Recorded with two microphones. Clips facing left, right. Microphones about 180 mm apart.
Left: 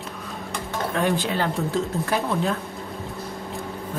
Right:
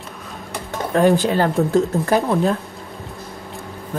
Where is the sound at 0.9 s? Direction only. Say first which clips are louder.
Right 9 dB; 40° right (ahead or behind).